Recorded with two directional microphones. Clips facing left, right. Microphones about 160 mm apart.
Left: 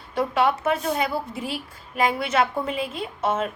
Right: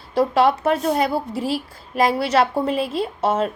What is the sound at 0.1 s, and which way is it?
A woman's voice, 35° right (ahead or behind).